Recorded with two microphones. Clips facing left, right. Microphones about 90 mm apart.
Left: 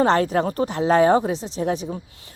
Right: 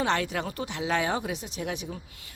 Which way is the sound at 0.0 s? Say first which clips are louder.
Left 9 dB; 40° left (ahead or behind).